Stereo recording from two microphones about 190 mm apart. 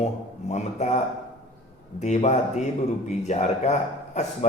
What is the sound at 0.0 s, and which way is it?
Speech, 35° left (ahead or behind).